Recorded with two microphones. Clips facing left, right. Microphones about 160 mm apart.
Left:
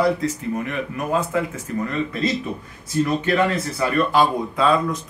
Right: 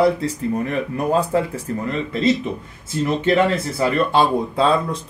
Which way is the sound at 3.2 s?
25° right (ahead or behind).